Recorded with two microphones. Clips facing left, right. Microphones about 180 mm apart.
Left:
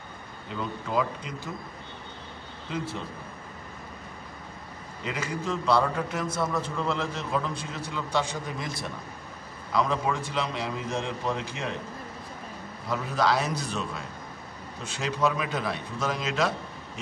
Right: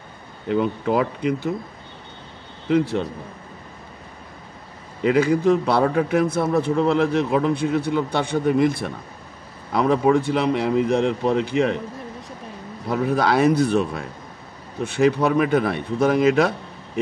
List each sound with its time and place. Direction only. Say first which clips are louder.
0.5 s a man's voice: right 12 dB; 65° right (ahead or behind)
2.7 s a man's voice: right 14 dB; 70° right (ahead or behind)
5.0 s a man's voice: right 15 dB; 60° right (ahead or behind)
12.9 s a man's voice: right 6 dB; 55° right (ahead or behind)